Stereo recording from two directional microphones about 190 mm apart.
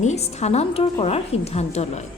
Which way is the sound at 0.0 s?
35° left (ahead or behind).